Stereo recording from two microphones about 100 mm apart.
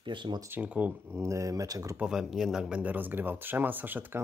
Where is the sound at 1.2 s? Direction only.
30° right (ahead or behind).